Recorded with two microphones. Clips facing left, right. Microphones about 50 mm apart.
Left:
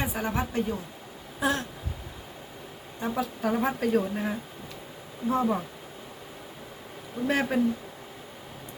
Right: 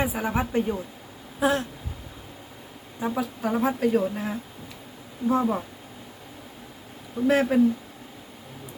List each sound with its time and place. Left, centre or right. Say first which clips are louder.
0.0 s speech: right 3 dB; centre
1.4 s a sound: right 4 dB; centre
3.0 s speech: right 2 dB; centre
7.3 s speech: right 5 dB; centre